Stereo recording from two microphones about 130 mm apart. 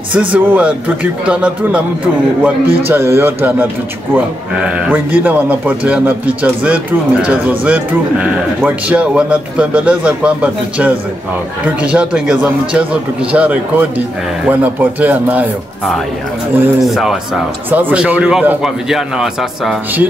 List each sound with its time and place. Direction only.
0.1 s speech: 10° right (ahead or behind)
16.8 s a man's voice: centre (ahead or behind)
17.6 s a man's voice: 15° right (ahead or behind)